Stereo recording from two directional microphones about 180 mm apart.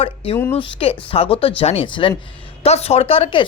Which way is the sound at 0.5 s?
35° left (ahead or behind).